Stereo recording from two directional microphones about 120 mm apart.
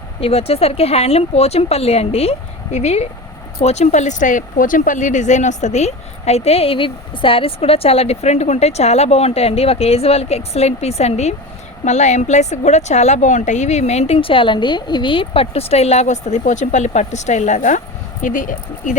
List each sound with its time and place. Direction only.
0.2 s speech: 55° left (ahead or behind)
11.9 s a woman's voice: 75° left (ahead or behind)